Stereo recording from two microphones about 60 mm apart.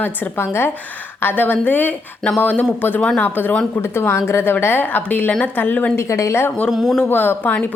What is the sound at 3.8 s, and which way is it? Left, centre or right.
A woman's voice, left.